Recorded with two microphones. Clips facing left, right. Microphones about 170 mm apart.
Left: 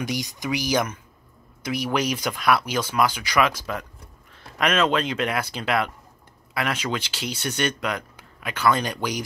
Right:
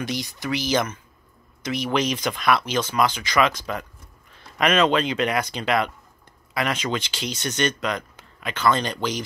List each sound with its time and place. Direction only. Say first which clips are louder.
0.0 s speech: even; 15° left (ahead or behind)